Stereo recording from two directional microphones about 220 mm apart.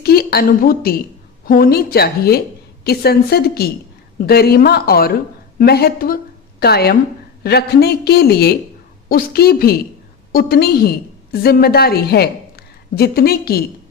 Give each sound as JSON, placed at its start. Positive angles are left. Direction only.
{"t": 0.0, "sound": "a woman's voice", "side_deg": 45}